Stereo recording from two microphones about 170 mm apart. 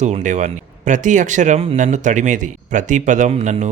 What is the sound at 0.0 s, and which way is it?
Speech, 45° right (ahead or behind).